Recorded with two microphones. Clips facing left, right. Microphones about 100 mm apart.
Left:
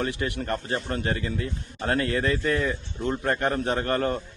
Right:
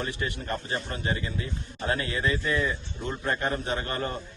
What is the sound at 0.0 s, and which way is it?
A man's voice, 60° left (ahead or behind).